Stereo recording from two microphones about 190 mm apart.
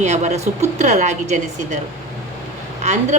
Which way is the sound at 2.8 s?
40° right (ahead or behind).